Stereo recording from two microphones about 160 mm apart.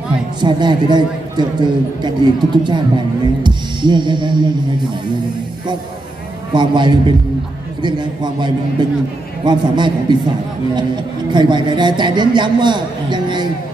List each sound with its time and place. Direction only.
0.4 s a man's voice: 30° right (ahead or behind)
6.5 s a man's voice: 30° right (ahead or behind)
11.3 s a man's voice: 30° right (ahead or behind)